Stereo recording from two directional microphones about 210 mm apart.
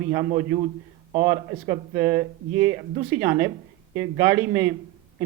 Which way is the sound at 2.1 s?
10° right (ahead or behind).